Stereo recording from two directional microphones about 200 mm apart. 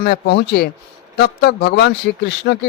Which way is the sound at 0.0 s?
55° left (ahead or behind).